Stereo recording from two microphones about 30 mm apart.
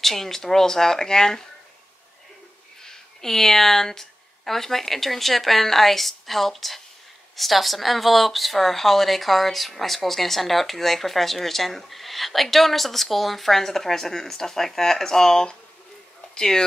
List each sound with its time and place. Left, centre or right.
0.0 s speech: centre
2.8 s speech: centre